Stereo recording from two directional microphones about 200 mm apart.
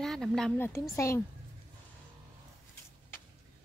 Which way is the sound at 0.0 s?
Centre (ahead or behind).